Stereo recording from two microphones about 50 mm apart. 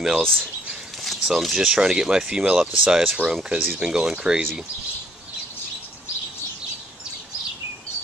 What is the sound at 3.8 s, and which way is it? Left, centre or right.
Speech, centre.